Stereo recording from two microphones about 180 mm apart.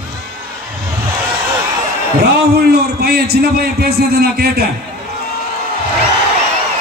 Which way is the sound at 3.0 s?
60° right (ahead or behind).